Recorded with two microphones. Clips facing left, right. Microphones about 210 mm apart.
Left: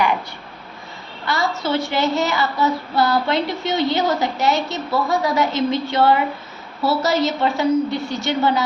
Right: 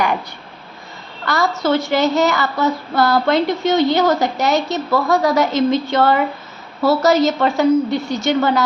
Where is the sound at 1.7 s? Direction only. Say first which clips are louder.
Right 4 dB; 45° right (ahead or behind).